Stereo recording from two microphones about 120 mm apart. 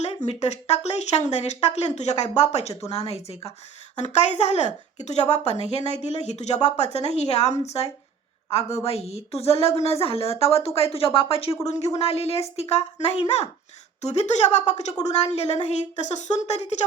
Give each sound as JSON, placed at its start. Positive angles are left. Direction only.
{"t": 0.0, "sound": "speech", "side_deg": 65}
{"t": 3.9, "sound": "speech", "side_deg": 70}
{"t": 11.6, "sound": "speech", "side_deg": 65}